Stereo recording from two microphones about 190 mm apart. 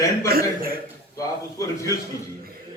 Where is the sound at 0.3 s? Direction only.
50° right (ahead or behind).